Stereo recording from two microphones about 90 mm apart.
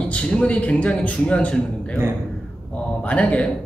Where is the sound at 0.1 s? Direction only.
15° left (ahead or behind).